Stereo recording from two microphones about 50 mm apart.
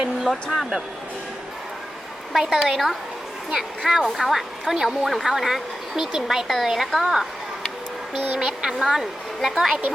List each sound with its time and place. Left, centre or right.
2.3 s speech: centre
8.4 s speech: centre